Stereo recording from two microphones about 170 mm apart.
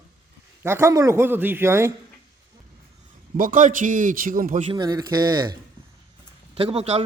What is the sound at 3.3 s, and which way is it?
A man's voice, 50° right (ahead or behind).